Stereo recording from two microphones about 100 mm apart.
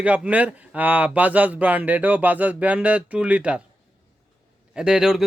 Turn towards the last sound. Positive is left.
turn(degrees=-5)  # may be behind; listen again after turning